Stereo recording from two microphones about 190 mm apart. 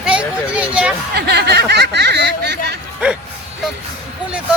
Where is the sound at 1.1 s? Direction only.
60° right (ahead or behind).